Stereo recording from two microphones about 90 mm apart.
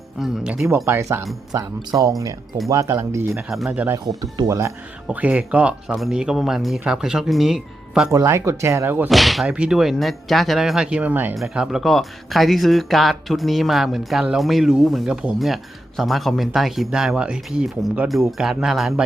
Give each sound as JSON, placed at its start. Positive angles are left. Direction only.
{"t": 0.2, "sound": "speech", "side_deg": -10}
{"t": 0.9, "sound": "speech", "side_deg": -30}
{"t": 3.7, "sound": "speech", "side_deg": -15}
{"t": 4.4, "sound": "speech", "side_deg": -35}
{"t": 5.0, "sound": "speech", "side_deg": -15}
{"t": 8.1, "sound": "speech", "side_deg": -35}
{"t": 9.0, "sound": "speech", "side_deg": 0}
{"t": 11.3, "sound": "speech", "side_deg": -5}
{"t": 15.4, "sound": "speech", "side_deg": 0}
{"t": 18.1, "sound": "speech", "side_deg": 0}